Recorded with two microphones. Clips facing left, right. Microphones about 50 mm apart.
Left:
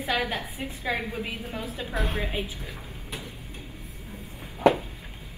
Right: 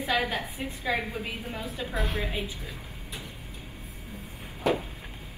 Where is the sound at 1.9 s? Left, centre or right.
Left.